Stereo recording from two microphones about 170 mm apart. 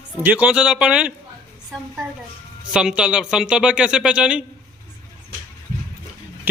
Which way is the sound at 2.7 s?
5° right (ahead or behind).